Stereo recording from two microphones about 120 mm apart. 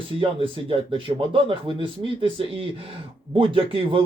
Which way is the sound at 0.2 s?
45° right (ahead or behind).